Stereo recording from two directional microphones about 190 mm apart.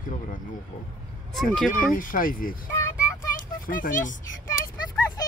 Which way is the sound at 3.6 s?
45° left (ahead or behind).